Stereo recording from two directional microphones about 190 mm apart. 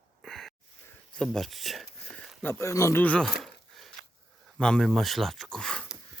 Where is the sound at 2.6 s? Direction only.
15° left (ahead or behind).